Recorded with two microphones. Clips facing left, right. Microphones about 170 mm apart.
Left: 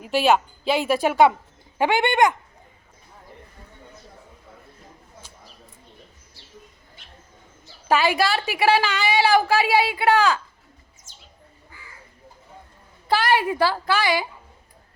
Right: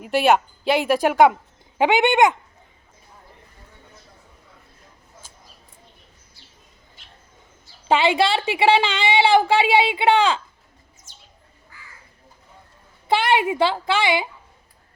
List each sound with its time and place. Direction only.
0.6 s a woman's voice: 15° right (ahead or behind)
7.9 s a woman's voice: 25° right (ahead or behind)
13.1 s a woman's voice: 25° right (ahead or behind)